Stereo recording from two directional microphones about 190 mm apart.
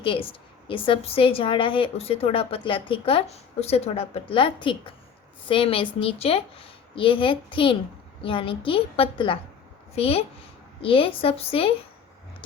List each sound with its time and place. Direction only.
0.0 s a woman's voice: 30° left (ahead or behind)